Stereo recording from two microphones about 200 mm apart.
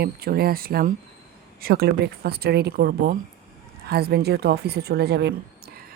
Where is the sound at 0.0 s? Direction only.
50° right (ahead or behind).